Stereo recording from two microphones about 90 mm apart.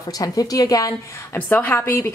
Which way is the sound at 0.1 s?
45° left (ahead or behind).